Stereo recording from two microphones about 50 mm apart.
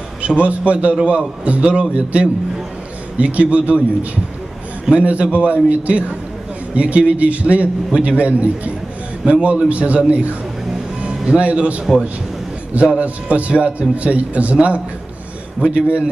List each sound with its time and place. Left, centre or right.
0.2 s a man's voice: right
3.2 s a man's voice: right
11.2 s a man's voice: right